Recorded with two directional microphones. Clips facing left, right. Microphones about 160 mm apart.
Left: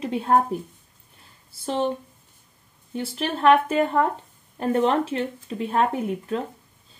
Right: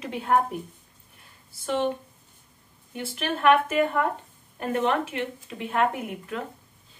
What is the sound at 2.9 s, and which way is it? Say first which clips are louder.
Speech: left 3 dB; 30° left (ahead or behind).